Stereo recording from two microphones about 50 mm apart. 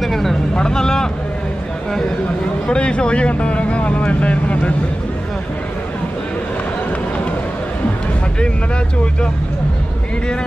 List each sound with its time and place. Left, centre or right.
0.0 s vehicle: centre
0.6 s speech: centre
2.7 s speech: left